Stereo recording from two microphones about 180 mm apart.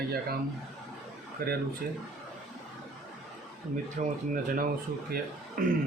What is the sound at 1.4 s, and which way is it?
Speech, 55° right (ahead or behind).